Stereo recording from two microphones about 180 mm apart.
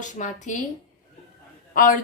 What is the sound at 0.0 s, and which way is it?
Speech, 45° left (ahead or behind).